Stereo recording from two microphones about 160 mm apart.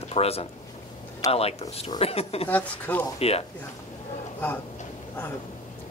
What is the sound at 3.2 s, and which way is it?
Speech, 40° left (ahead or behind).